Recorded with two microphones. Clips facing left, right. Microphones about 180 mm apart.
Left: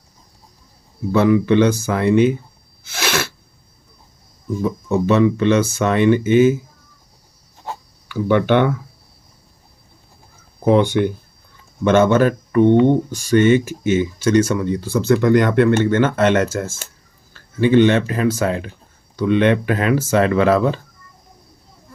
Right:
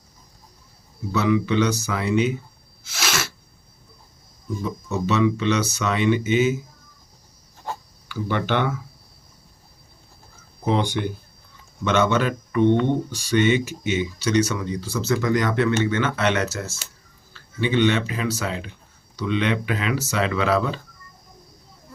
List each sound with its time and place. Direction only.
1.1 s speech: 55° left (ahead or behind)
2.8 s sneeze: 60° left (ahead or behind)
4.6 s speech: 55° left (ahead or behind)
8.0 s speech: 55° left (ahead or behind)
10.6 s speech: 55° left (ahead or behind)